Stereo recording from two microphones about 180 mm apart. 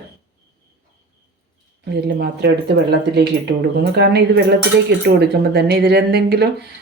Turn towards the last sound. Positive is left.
turn(degrees=-65)  # may be behind; listen again after turning